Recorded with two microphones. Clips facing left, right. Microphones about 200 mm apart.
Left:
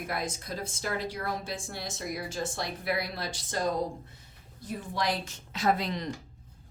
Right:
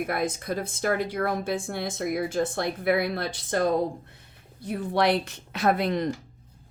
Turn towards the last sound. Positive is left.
turn(degrees=-55)  # may be behind; listen again after turning